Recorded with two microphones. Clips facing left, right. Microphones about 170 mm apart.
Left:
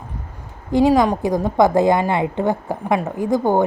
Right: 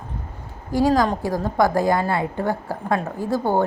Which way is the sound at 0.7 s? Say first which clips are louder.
Left 4 dB; 20° left (ahead or behind).